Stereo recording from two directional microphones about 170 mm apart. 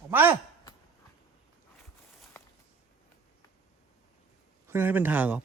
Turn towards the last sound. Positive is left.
turn(degrees=-10)  # may be behind; listen again after turning